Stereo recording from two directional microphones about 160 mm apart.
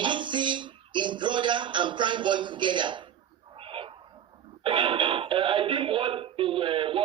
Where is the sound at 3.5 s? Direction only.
35° right (ahead or behind).